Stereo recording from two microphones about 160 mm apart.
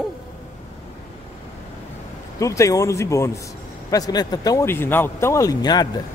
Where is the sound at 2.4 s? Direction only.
20° left (ahead or behind).